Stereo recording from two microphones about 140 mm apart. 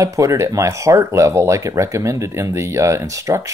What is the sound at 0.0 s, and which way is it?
Speech, 20° right (ahead or behind).